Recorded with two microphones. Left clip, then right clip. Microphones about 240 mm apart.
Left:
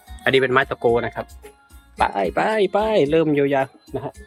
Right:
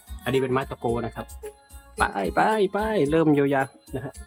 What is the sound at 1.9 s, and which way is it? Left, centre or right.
Speech, centre.